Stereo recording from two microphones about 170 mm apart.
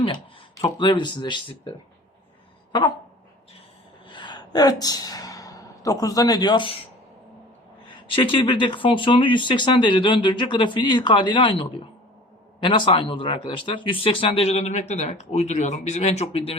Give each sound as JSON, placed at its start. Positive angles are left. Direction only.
{"t": 0.8, "sound": "speech", "side_deg": 30}
{"t": 4.1, "sound": "speech", "side_deg": 25}
{"t": 8.1, "sound": "speech", "side_deg": 30}